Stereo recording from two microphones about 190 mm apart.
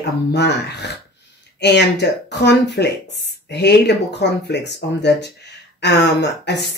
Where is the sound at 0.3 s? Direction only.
65° left (ahead or behind).